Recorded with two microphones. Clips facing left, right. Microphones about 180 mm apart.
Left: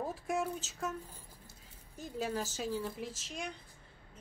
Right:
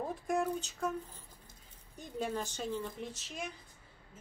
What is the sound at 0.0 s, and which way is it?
Speech, 5° left (ahead or behind).